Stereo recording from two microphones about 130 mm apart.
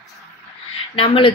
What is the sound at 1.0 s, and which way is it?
Speech, 40° left (ahead or behind).